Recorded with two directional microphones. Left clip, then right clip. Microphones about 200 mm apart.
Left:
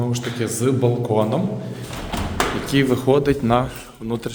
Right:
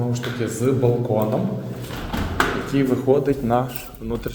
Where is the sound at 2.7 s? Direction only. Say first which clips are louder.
Left 5 dB; 45° left (ahead or behind); by 4.3 s 30° left (ahead or behind).